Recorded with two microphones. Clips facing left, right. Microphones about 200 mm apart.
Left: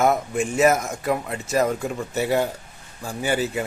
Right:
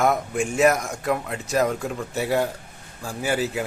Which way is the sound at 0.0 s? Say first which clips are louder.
Left 1 dB; centre (ahead or behind).